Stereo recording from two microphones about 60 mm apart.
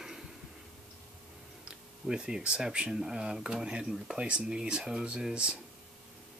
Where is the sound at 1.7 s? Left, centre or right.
Centre.